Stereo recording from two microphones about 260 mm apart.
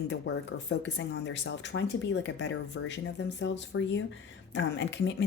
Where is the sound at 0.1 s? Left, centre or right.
Left.